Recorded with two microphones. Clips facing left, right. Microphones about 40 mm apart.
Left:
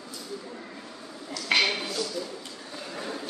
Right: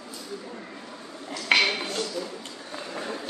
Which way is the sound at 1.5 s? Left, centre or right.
Right.